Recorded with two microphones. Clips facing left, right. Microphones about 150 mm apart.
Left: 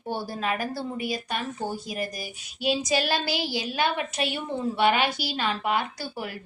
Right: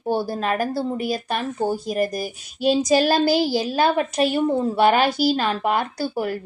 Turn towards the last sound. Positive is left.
turn(degrees=-45)  # may be behind; listen again after turning